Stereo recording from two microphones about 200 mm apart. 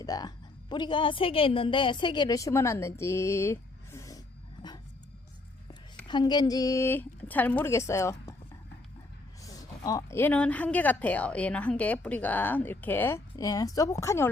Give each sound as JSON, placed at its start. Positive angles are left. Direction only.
{"t": 0.0, "sound": "a woman's voice", "side_deg": 20}
{"t": 6.1, "sound": "speech", "side_deg": 20}
{"t": 9.4, "sound": "speech", "side_deg": 20}